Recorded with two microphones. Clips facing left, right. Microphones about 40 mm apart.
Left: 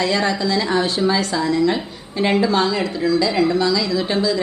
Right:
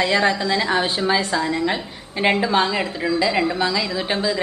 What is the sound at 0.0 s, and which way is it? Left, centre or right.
A woman's voice, right.